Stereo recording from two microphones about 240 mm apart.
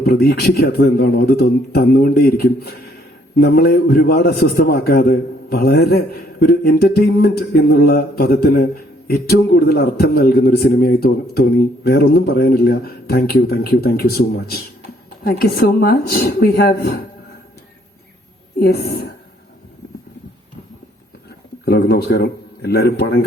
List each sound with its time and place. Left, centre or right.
0.0 s a man's voice: left
18.6 s a man's voice: left
21.6 s speech: left